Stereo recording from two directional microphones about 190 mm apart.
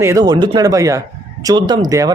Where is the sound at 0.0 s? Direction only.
15° right (ahead or behind).